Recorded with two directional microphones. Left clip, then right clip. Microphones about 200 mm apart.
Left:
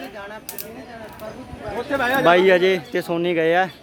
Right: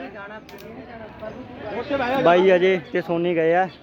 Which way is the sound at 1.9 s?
40° left (ahead or behind).